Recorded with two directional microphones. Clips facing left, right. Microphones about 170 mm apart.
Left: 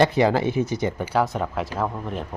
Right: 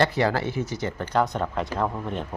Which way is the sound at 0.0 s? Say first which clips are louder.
Left 4 dB; 20° left (ahead or behind).